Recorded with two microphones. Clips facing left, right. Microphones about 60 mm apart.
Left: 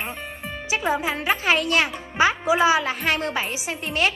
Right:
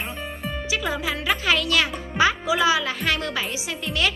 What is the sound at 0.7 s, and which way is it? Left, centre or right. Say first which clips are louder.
Speech: left 4 dB; left.